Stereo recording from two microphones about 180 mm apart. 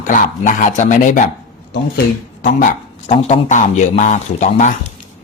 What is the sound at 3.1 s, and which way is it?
Speech, 35° left (ahead or behind).